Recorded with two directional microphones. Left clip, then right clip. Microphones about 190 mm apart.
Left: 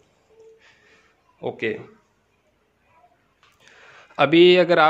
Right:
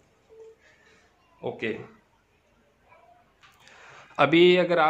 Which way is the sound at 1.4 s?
40° left (ahead or behind).